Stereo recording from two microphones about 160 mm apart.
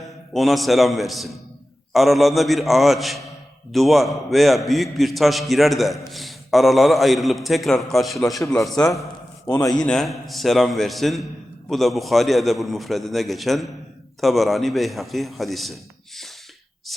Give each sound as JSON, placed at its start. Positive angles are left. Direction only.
{"t": 0.3, "sound": "a man's voice", "side_deg": 0}
{"t": 9.5, "sound": "a man's voice", "side_deg": 25}
{"t": 9.8, "sound": "a man's voice", "side_deg": 5}